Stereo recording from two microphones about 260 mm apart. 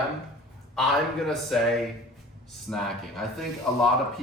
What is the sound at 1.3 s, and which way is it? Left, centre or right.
Speech, centre.